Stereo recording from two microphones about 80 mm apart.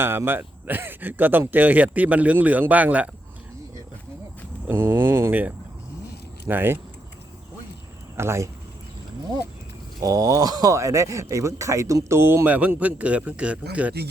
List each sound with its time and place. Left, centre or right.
0.0 s speech: right
4.7 s speech: right
8.1 s speech: right
10.0 s speech: right
12.5 s a man's voice: centre